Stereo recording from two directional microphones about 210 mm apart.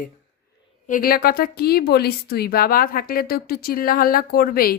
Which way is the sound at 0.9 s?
40° left (ahead or behind).